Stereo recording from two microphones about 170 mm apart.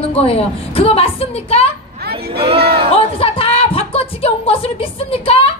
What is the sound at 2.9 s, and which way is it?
Speech, 35° left (ahead or behind).